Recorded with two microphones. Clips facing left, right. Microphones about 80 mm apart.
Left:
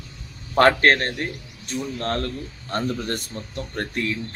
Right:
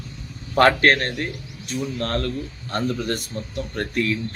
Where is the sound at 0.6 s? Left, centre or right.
Left.